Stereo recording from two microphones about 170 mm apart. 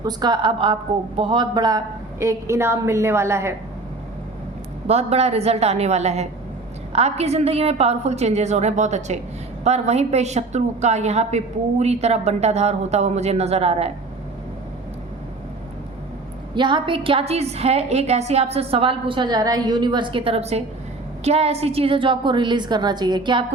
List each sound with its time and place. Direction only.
0.0 s speech: 25° right (ahead or behind)
4.9 s a woman's voice: 40° right (ahead or behind)
16.6 s a woman's voice: 30° right (ahead or behind)